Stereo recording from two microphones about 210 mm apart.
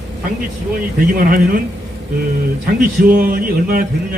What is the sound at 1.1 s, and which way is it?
Speech, 40° right (ahead or behind).